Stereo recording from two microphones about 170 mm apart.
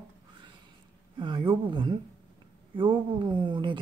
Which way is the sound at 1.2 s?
30° right (ahead or behind).